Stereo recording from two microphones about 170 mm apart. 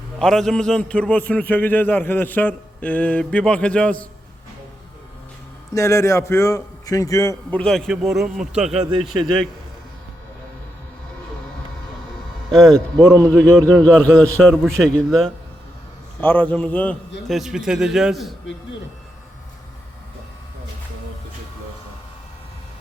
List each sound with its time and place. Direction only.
0.2 s a man's voice: 5° left (ahead or behind)
5.7 s a man's voice: 15° left (ahead or behind)
7.6 s a man's voice: 5° left (ahead or behind)
8.8 s speech: 30° right (ahead or behind)
9.0 s a man's voice: 5° left (ahead or behind)
12.5 s a man's voice: centre (ahead or behind)